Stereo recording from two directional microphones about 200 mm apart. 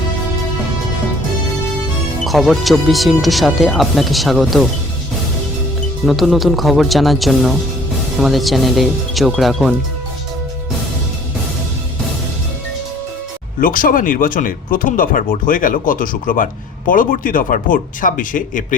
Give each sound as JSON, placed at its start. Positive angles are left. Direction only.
{"t": 2.2, "sound": "speech", "side_deg": 0}
{"t": 6.1, "sound": "speech", "side_deg": 0}
{"t": 13.6, "sound": "speech", "side_deg": 45}